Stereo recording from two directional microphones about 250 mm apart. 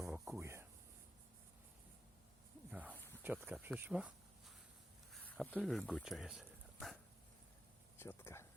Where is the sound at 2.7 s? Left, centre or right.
Centre.